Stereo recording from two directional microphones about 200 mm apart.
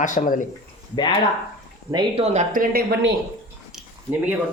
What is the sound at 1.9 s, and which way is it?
Speech, 20° right (ahead or behind).